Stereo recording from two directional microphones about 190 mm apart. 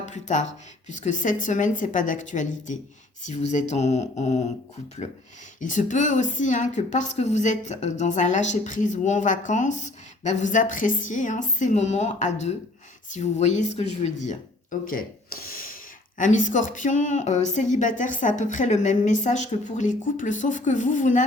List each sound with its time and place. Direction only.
0.0 s a woman's voice: 40° left (ahead or behind)
5.5 s a woman's voice: 40° left (ahead or behind)